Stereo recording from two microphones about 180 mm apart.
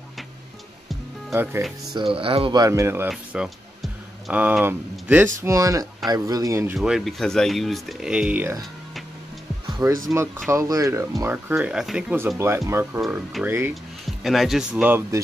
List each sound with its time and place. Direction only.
1.3 s speech: 15° right (ahead or behind)
2.1 s speech: 30° right (ahead or behind)
2.6 s speech: 15° right (ahead or behind)
3.1 s speech: centre (ahead or behind)
6.8 s speech: centre (ahead or behind)
9.7 s music: 20° right (ahead or behind)
10.1 s speech: 15° right (ahead or behind)